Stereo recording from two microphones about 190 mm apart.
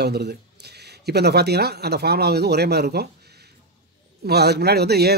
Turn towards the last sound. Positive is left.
turn(degrees=-60)  # may be behind; listen again after turning